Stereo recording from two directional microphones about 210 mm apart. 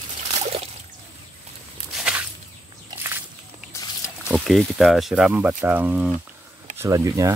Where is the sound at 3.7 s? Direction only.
15° left (ahead or behind).